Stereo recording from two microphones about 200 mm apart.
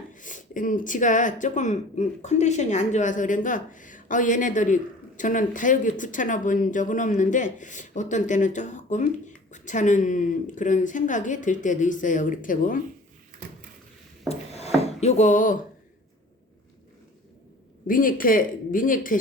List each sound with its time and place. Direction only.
0.1 s speech: 40° left (ahead or behind)
14.3 s a sound: 30° left (ahead or behind)
17.8 s speech: 45° left (ahead or behind)